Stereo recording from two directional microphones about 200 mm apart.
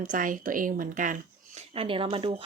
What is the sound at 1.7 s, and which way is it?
Speech, 30° right (ahead or behind).